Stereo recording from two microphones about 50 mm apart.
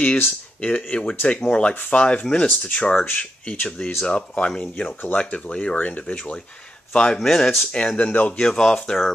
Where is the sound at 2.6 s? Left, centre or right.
Left.